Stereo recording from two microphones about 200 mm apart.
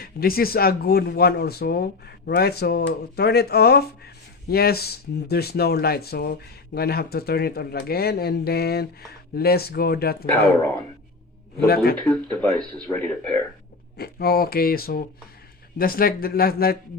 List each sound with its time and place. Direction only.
0.0 s speech: 50° left (ahead or behind)
11.9 s speech: 5° left (ahead or behind)
13.9 s speech: 50° left (ahead or behind)